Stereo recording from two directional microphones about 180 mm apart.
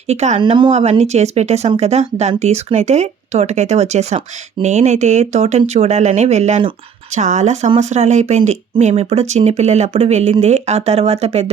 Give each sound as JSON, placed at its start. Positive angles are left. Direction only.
{"t": 0.1, "sound": "speech", "side_deg": -35}